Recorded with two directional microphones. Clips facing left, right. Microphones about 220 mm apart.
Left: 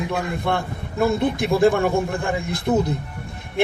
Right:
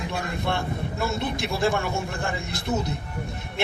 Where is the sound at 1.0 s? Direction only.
55° left (ahead or behind).